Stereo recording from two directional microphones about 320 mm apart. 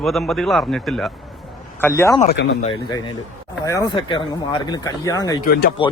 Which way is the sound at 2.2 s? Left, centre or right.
Left.